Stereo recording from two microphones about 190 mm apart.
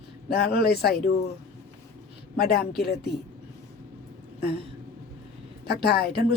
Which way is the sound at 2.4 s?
55° left (ahead or behind).